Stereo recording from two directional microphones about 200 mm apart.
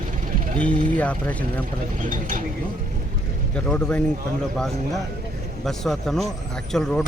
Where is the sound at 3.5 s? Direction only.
5° left (ahead or behind).